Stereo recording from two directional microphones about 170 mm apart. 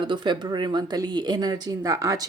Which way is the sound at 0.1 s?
25° right (ahead or behind).